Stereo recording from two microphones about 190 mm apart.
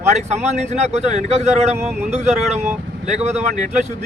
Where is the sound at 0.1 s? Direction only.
35° right (ahead or behind).